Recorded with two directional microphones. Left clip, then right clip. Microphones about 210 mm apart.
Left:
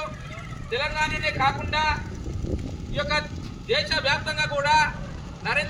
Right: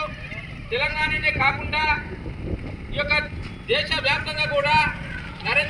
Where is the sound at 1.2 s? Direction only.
5° right (ahead or behind).